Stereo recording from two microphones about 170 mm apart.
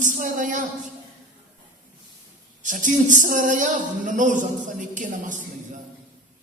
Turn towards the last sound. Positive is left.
turn(degrees=-50)  # may be behind; listen again after turning